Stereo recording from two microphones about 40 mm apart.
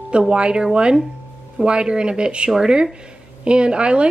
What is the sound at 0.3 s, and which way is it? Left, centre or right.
Speech, right.